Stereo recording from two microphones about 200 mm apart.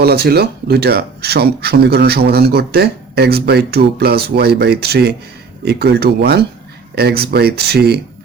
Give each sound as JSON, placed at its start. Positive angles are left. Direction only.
{"t": 0.0, "sound": "speech", "side_deg": -50}